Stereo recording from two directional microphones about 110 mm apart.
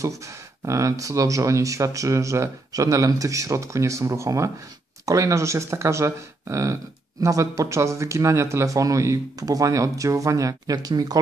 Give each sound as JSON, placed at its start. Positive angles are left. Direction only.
{"t": 0.7, "sound": "speech", "side_deg": -30}